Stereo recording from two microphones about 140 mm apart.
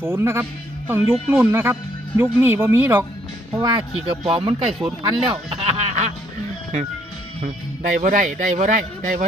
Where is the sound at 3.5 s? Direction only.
30° right (ahead or behind); by 6.1 s 50° right (ahead or behind).